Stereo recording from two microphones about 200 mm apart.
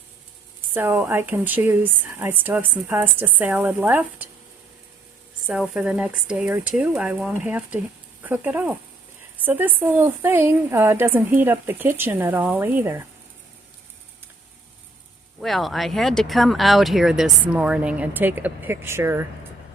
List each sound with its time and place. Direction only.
0.7 s a woman's voice: 10° right (ahead or behind)
5.5 s a woman's voice: 5° right (ahead or behind)
15.4 s a woman's voice: centre (ahead or behind)